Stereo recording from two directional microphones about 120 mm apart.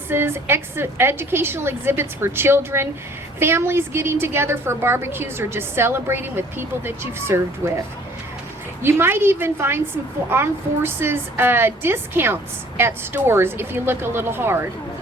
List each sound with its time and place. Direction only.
0.1 s a woman's voice: 20° right (ahead or behind)
8.8 s a woman's voice: 20° right (ahead or behind)